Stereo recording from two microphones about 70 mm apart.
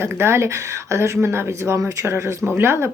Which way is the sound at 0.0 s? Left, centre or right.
Right.